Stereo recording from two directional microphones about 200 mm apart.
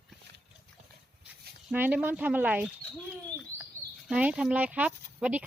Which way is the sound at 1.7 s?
5° right (ahead or behind).